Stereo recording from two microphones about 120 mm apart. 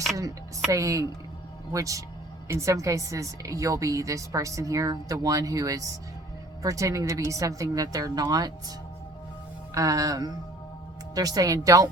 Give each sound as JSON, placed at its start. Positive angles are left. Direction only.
{"t": 0.7, "sound": "a woman's voice", "side_deg": -30}
{"t": 9.7, "sound": "a woman's voice", "side_deg": -30}